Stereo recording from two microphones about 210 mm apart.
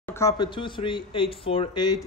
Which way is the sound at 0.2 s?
20° left (ahead or behind).